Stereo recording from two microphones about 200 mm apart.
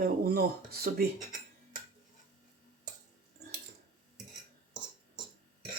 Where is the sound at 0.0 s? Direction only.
50° right (ahead or behind).